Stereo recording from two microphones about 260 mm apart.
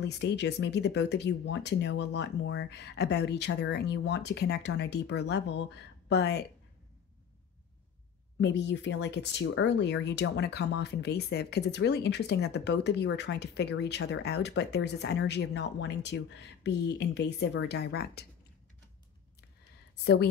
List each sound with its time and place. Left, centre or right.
0.0 s speech: left
8.4 s speech: left